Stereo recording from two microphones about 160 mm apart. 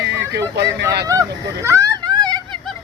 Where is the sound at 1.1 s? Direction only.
20° right (ahead or behind).